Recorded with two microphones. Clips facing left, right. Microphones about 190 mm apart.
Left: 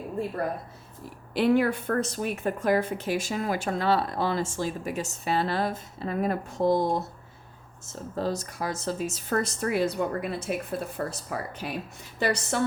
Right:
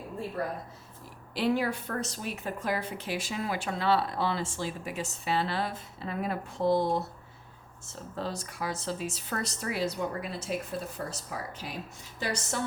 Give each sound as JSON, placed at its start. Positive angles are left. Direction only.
{"t": 1.3, "sound": "a woman's voice", "side_deg": 55}
{"t": 8.1, "sound": "a woman's voice", "side_deg": 45}